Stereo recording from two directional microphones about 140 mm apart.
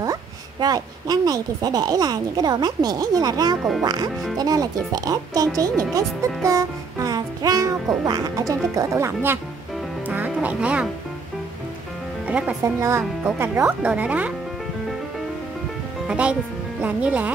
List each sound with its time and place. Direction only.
0.0 s speech: 25° right (ahead or behind)
5.6 s music: 25° right (ahead or behind); by 10.9 s 10° right (ahead or behind)
12.3 s speech: 10° right (ahead or behind)
12.6 s speech: 20° right (ahead or behind)
16.1 s speech: 10° right (ahead or behind)